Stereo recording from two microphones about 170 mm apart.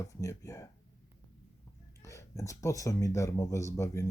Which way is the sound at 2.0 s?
20° left (ahead or behind).